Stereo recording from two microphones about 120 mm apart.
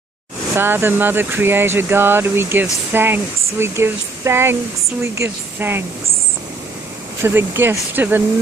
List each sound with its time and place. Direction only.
0.6 s speech: 20° right (ahead or behind)
7.2 s speech: 20° right (ahead or behind)